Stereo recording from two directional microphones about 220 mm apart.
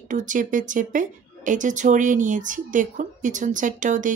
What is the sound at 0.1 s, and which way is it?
Speech, 35° right (ahead or behind).